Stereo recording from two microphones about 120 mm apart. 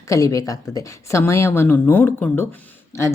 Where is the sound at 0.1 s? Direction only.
25° left (ahead or behind).